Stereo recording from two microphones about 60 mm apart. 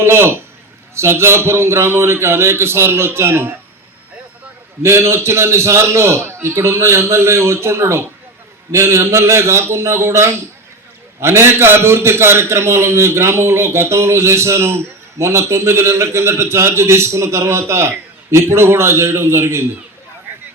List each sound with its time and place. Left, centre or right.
0.0 s a man's voice: right
4.8 s a man's voice: right